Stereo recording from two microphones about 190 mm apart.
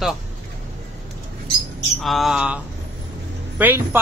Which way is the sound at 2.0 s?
Centre (ahead or behind).